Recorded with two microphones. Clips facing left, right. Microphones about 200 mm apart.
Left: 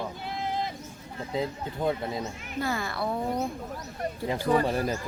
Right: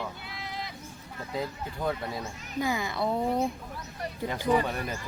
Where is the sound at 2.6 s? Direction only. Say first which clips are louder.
Right 1 dB; 15° right (ahead or behind).